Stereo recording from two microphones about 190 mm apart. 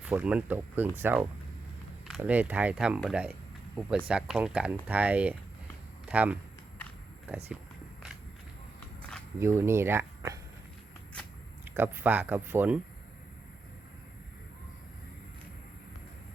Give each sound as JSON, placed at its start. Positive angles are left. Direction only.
{"t": 0.0, "sound": "speech", "side_deg": -5}
{"t": 9.0, "sound": "walk", "side_deg": 5}
{"t": 9.4, "sound": "speech", "side_deg": -15}
{"t": 11.7, "sound": "speech", "side_deg": -10}